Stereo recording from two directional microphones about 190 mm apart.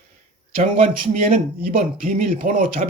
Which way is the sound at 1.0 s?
45° right (ahead or behind).